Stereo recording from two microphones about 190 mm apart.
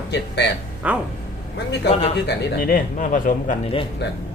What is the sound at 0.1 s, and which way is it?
Speech, 65° left (ahead or behind).